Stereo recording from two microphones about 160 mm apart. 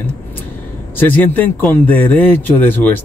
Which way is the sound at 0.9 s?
10° left (ahead or behind).